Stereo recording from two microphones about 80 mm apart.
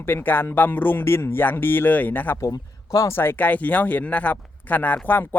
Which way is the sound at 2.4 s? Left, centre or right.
Left.